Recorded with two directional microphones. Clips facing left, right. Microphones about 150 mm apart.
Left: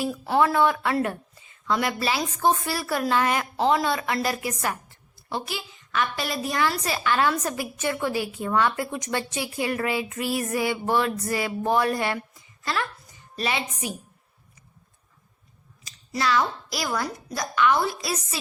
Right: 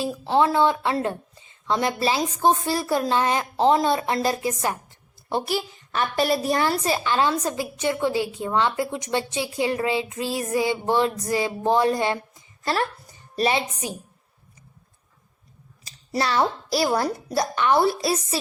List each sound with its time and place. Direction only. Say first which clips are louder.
0.0 s a woman's voice: right 2 dB; 20° right (ahead or behind)
5.3 s a woman's voice: right 6 dB; 35° right (ahead or behind)
12.6 s speech: right 4 dB; 35° right (ahead or behind)
15.8 s a child's voice: right 2 dB; 35° right (ahead or behind)